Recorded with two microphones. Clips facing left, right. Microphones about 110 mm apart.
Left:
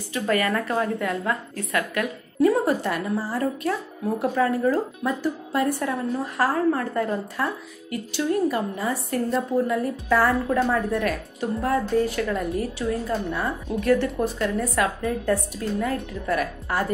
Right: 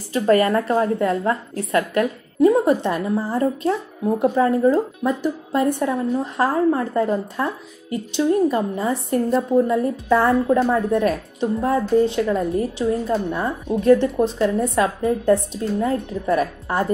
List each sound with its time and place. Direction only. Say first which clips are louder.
0.1 s a woman's voice: right 7 dB; 35° right (ahead or behind)
2.4 s a woman's voice: right 4 dB; 20° right (ahead or behind)